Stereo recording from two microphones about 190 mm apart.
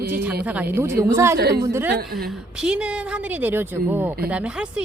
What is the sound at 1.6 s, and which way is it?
Speech, 15° right (ahead or behind).